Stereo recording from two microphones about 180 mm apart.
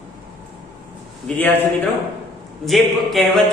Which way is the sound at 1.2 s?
10° left (ahead or behind).